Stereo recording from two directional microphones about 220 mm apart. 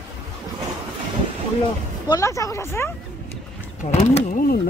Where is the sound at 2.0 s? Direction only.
15° left (ahead or behind).